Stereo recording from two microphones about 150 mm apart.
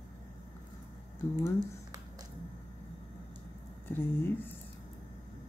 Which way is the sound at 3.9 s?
15° left (ahead or behind).